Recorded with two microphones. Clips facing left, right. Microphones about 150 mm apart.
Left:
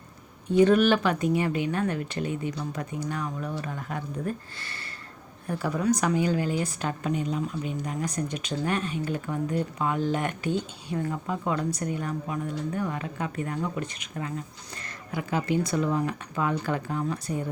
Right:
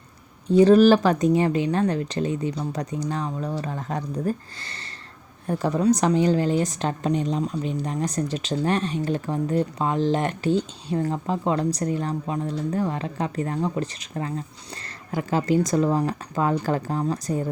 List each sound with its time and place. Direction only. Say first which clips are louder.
0.4 s speech: right 5 dB; 35° right (ahead or behind)
5.5 s speech: right 5 dB; 35° right (ahead or behind)